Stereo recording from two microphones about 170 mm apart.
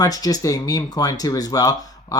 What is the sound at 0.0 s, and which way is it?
Speech, 20° left (ahead or behind).